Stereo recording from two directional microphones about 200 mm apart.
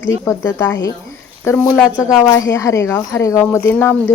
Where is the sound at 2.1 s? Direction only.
15° left (ahead or behind).